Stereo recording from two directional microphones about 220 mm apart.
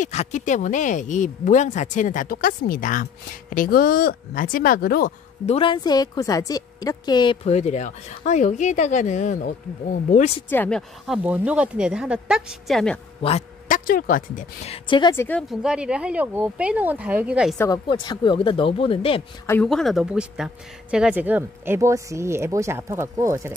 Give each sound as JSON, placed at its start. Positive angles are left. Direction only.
{"t": 0.0, "sound": "speech", "side_deg": 30}
{"t": 5.5, "sound": "a woman's voice", "side_deg": 25}
{"t": 10.5, "sound": "speech", "side_deg": 10}
{"t": 11.1, "sound": "speech", "side_deg": -5}
{"t": 13.2, "sound": "a woman's voice", "side_deg": 30}
{"t": 15.2, "sound": "speech", "side_deg": 0}
{"t": 17.6, "sound": "a woman's voice", "side_deg": 20}
{"t": 19.4, "sound": "speech", "side_deg": 5}